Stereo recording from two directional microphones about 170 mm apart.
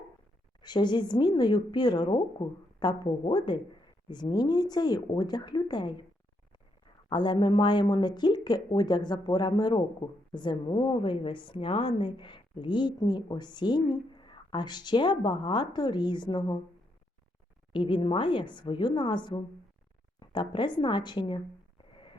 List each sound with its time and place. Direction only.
0.6 s a woman's voice: 25° left (ahead or behind)
7.1 s a woman's voice: 25° left (ahead or behind)
17.7 s a woman's voice: 30° left (ahead or behind)